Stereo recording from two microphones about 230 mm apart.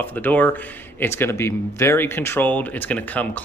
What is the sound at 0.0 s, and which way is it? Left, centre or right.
Speech, centre.